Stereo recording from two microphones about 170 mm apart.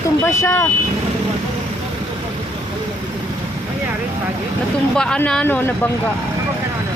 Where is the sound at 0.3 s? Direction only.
15° left (ahead or behind).